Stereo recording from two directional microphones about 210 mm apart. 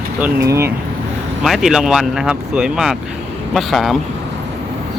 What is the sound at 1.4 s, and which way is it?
Speech, centre (ahead or behind).